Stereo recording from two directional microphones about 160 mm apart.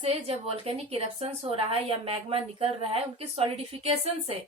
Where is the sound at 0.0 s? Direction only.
40° right (ahead or behind).